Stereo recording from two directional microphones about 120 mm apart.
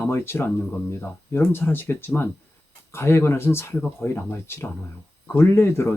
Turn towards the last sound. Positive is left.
turn(degrees=20)  # may be behind; listen again after turning